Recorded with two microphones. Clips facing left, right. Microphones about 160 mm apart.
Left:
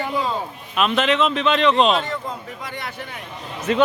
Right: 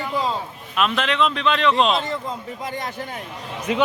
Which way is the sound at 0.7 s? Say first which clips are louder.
Left 2 dB; centre (ahead or behind).